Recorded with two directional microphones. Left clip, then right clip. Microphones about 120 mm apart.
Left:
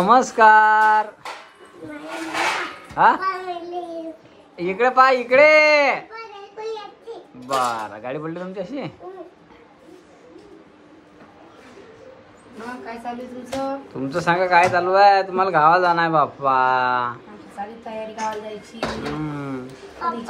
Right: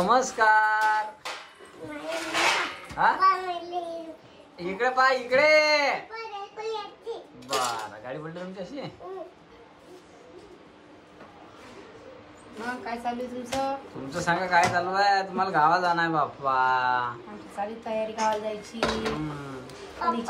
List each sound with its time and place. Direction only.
0.0 s speech: centre (ahead or behind)
2.0 s a sound: centre (ahead or behind)
4.6 s a child's voice: centre (ahead or behind)
7.9 s speech: 10° right (ahead or behind)
12.7 s speech: centre (ahead or behind)
14.8 s a man's voice: 30° right (ahead or behind)
17.8 s speech: centre (ahead or behind)
19.2 s a sound: 25° right (ahead or behind)